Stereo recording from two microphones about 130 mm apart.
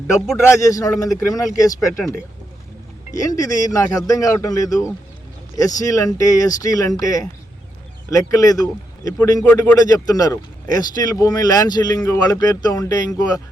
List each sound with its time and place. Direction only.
0.3 s speech: 25° left (ahead or behind)